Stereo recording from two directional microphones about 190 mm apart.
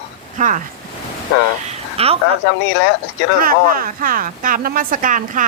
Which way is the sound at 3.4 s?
50° right (ahead or behind).